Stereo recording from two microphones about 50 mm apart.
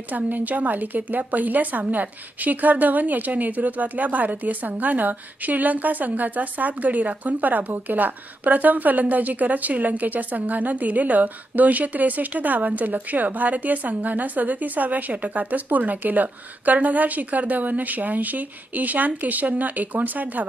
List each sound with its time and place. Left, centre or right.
0.1 s a woman's voice: right